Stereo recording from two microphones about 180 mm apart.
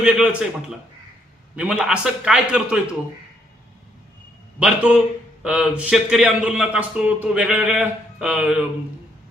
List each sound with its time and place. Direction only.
0.0 s a man's voice: 5° right (ahead or behind)
4.6 s a man's voice: 5° right (ahead or behind)